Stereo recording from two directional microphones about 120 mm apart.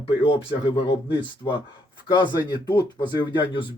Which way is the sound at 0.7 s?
50° left (ahead or behind).